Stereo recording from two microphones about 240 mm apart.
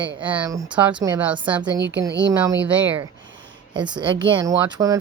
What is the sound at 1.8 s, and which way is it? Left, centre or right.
Speech, right.